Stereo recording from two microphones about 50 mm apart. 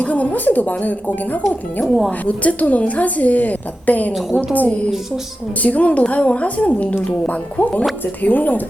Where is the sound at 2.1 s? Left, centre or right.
Left.